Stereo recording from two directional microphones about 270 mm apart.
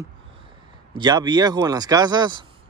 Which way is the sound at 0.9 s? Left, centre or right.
Centre.